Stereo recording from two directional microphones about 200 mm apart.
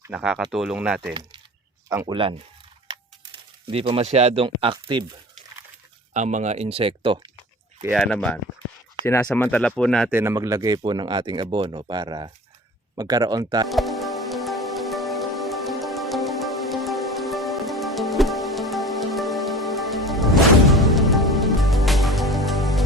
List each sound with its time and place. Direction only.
0.0 s speech: 5° right (ahead or behind)
1.9 s speech: 20° right (ahead or behind)
3.7 s speech: 30° right (ahead or behind)
6.1 s speech: 35° right (ahead or behind)
7.8 s speech: 10° right (ahead or behind)
8.0 s speech: 5° left (ahead or behind)
10.1 s speech: 10° right (ahead or behind)
13.7 s music: centre (ahead or behind)